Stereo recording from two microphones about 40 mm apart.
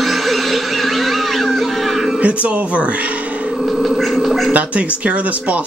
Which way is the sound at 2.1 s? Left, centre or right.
Right.